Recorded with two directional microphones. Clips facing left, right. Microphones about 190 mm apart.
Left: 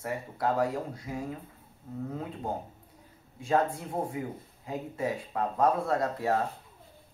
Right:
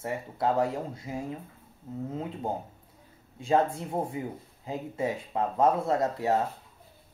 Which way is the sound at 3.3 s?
25° right (ahead or behind).